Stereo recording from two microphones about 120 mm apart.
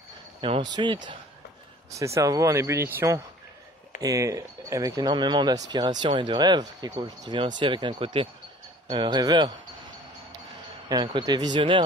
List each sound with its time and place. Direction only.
0.4 s speech: 40° right (ahead or behind)
2.0 s speech: 25° right (ahead or behind)
5.1 s speech: 40° right (ahead or behind)
8.8 s speech: 40° right (ahead or behind)
10.9 s speech: 35° right (ahead or behind)